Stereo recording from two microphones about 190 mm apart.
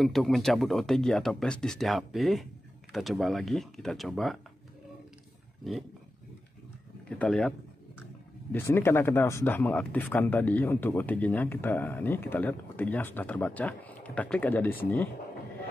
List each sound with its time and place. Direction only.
0.0 s speech: centre (ahead or behind)
5.6 s speech: centre (ahead or behind)
7.1 s speech: 5° left (ahead or behind)